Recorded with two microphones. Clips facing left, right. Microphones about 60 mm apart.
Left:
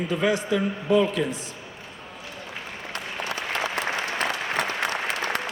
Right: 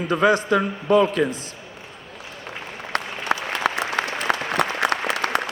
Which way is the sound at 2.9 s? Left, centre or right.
Right.